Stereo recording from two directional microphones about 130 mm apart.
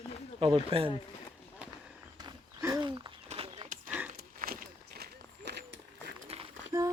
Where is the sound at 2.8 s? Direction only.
35° right (ahead or behind).